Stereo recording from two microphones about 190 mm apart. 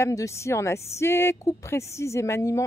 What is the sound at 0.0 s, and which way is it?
Speech, 15° left (ahead or behind).